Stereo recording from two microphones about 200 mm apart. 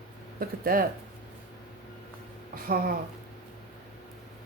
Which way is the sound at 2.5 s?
45° right (ahead or behind).